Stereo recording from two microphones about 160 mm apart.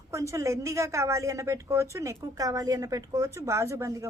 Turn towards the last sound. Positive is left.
turn(degrees=-20)  # may be behind; listen again after turning